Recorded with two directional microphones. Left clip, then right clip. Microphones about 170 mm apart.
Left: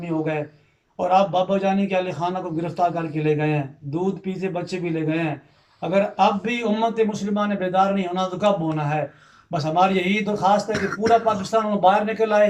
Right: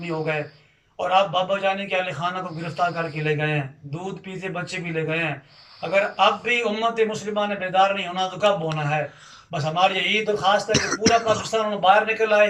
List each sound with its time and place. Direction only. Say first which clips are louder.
0.1 s a man's voice: left 1 dB; 20° left (ahead or behind)
9.6 s a man's voice: left 1 dB; 30° left (ahead or behind)
10.7 s speech: even; 15° right (ahead or behind)
11.8 s a man's voice: right 2 dB; 30° left (ahead or behind)